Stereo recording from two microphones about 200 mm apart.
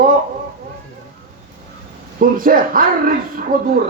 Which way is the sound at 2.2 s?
45° right (ahead or behind).